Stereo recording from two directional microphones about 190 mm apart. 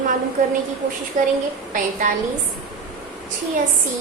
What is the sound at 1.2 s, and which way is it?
Speech, 40° right (ahead or behind).